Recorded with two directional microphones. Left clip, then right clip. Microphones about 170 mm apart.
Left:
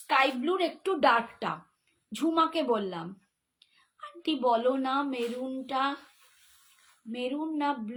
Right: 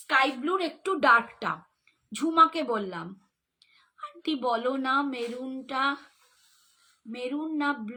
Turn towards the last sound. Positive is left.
turn(degrees=-20)  # may be behind; listen again after turning